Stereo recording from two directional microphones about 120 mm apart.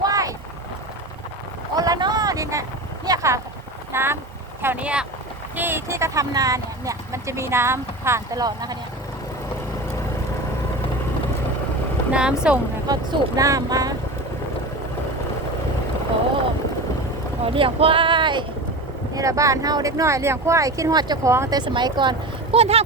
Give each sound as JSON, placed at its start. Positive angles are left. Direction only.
{"t": 0.0, "sound": "vehicle", "side_deg": -30}
{"t": 1.7, "sound": "a sound", "side_deg": -30}
{"t": 3.9, "sound": "vehicle", "side_deg": -20}
{"t": 4.6, "sound": "speech", "side_deg": -15}
{"t": 12.1, "sound": "speech", "side_deg": -5}
{"t": 12.9, "sound": "speech", "side_deg": -30}
{"t": 17.4, "sound": "speech", "side_deg": -50}
{"t": 19.1, "sound": "speech", "side_deg": -25}
{"t": 21.3, "sound": "speech", "side_deg": -25}
{"t": 21.6, "sound": "speech", "side_deg": -40}
{"t": 22.5, "sound": "speech", "side_deg": -55}